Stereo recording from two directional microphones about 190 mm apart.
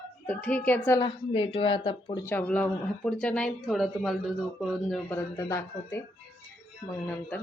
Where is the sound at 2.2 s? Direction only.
10° left (ahead or behind).